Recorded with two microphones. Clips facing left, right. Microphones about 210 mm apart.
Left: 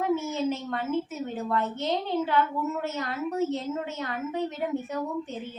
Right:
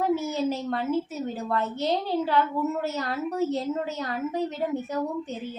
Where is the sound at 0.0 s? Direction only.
35° right (ahead or behind).